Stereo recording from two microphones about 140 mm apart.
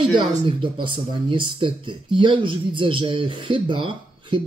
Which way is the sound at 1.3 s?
35° right (ahead or behind).